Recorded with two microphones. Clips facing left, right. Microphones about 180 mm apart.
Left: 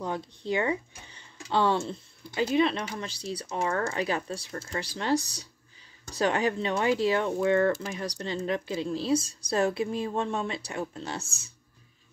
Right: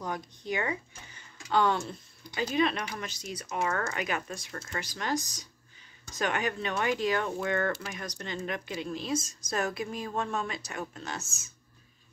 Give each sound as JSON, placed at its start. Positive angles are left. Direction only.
{"t": 0.0, "sound": "speech", "side_deg": 30}